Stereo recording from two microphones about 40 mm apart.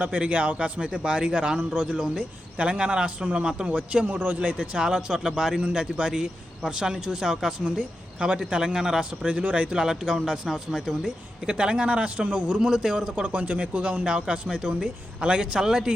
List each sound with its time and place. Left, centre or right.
0.0 s a man's voice: right
3.7 s a man's voice: right
4.4 s a man's voice: right; by 9.0 s centre
9.5 s a man's voice: right
9.8 s speech: centre
11.4 s a man's voice: right
13.2 s a man's voice: right
15.6 s speech: centre